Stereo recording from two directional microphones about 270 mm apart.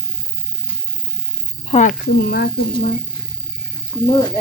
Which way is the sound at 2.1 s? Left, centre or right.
Left.